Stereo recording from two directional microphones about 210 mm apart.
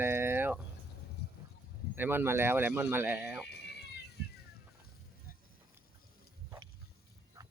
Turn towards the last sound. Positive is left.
turn(degrees=-15)  # may be behind; listen again after turning